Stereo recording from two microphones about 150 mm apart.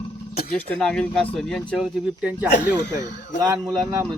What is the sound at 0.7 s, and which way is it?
Speech, 5° left (ahead or behind).